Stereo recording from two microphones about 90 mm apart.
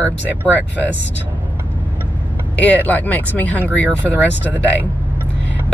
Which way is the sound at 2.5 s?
15° left (ahead or behind).